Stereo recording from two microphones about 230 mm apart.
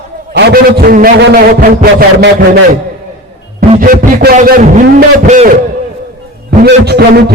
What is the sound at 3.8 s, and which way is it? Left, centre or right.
A man's voice, right.